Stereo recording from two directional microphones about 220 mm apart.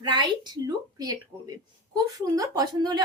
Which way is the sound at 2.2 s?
15° right (ahead or behind).